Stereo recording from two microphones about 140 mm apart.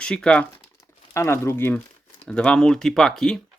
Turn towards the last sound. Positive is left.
turn(degrees=5)  # may be behind; listen again after turning